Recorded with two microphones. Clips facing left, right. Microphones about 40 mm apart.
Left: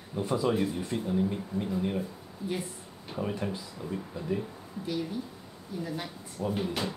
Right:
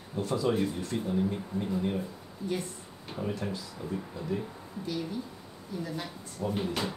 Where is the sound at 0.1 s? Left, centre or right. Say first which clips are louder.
Left 1 dB; centre.